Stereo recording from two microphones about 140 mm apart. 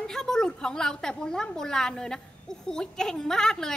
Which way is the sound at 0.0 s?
5° left (ahead or behind).